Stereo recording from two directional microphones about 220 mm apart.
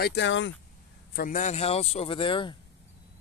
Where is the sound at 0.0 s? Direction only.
50° left (ahead or behind).